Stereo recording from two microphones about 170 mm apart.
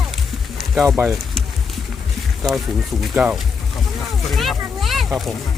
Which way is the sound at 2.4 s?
Centre (ahead or behind).